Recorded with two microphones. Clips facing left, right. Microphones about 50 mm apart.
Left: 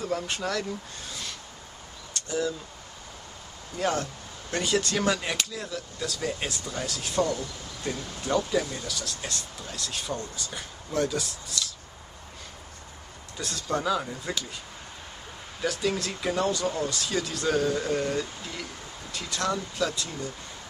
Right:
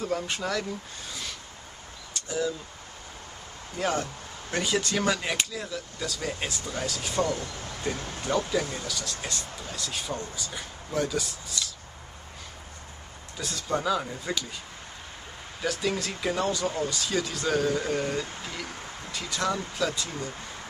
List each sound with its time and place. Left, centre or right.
0.0 s speech: centre
2.1 s a sound: centre
3.7 s speech: centre
8.5 s speech: centre
13.4 s speech: centre
15.6 s speech: centre